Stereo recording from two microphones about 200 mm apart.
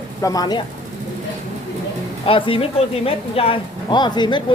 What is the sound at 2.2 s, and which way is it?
Speech, 25° left (ahead or behind).